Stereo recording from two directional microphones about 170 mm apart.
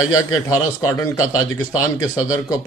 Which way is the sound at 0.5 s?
20° left (ahead or behind).